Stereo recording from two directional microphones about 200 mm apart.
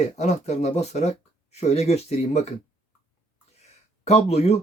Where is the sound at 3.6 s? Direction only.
35° left (ahead or behind).